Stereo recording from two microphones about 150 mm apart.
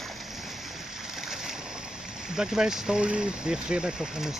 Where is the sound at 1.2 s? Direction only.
5° right (ahead or behind).